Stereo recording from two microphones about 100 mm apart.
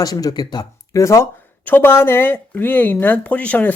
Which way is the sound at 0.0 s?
40° left (ahead or behind).